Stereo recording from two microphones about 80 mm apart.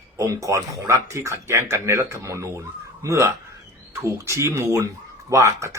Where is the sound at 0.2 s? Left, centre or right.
Right.